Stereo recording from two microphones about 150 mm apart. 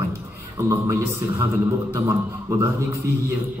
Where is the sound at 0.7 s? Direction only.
20° right (ahead or behind).